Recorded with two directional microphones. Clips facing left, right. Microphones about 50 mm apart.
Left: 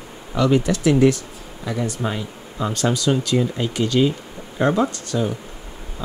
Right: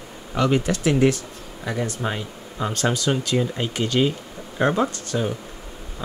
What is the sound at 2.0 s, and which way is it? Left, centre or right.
Speech, centre.